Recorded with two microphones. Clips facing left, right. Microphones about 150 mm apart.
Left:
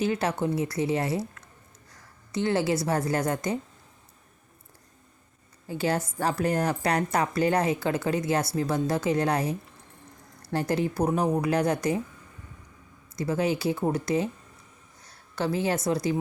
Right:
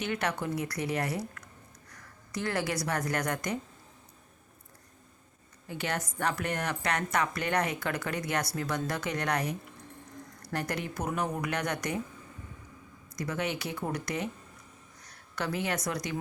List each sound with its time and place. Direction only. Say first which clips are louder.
0.0 s a woman's voice: left 6 dB; 30° left (ahead or behind)
5.6 s a woman's voice: left 7 dB; 30° left (ahead or behind)
13.1 s a woman's voice: left 7 dB; 30° left (ahead or behind)